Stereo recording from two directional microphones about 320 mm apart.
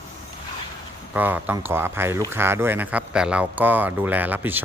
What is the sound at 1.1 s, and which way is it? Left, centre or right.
Speech, centre.